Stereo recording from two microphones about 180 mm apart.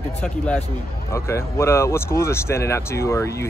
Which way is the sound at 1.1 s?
15° left (ahead or behind).